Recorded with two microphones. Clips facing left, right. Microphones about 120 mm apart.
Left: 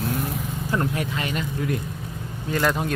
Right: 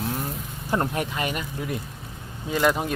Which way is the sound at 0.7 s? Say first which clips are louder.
Right 1 dB; 30° right (ahead or behind).